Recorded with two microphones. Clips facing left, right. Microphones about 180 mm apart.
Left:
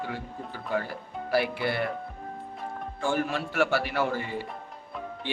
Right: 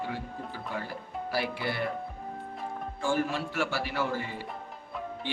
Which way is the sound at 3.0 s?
60° left (ahead or behind).